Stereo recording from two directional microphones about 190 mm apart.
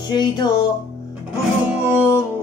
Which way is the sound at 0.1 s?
25° left (ahead or behind).